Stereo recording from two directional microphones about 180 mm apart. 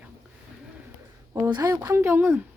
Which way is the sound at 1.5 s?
20° right (ahead or behind).